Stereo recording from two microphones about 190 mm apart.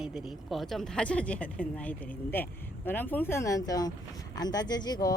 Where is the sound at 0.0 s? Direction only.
Centre (ahead or behind).